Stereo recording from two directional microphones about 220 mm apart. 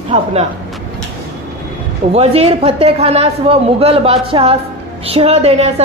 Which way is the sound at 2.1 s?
30° right (ahead or behind).